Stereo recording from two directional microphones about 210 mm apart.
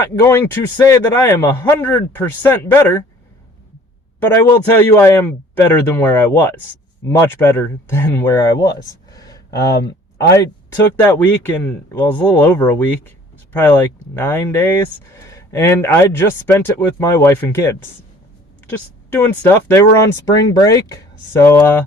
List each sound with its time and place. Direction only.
0.0 s speech: 10° left (ahead or behind)
4.4 s speech: 15° left (ahead or behind)
8.8 s a sound: 15° left (ahead or behind)
9.8 s speech: 15° left (ahead or behind)
19.1 s speech: 10° left (ahead or behind)